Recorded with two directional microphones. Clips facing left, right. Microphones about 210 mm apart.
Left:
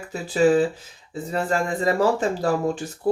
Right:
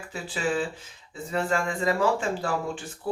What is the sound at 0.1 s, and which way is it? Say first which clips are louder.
Speech: left 11 dB; 40° left (ahead or behind).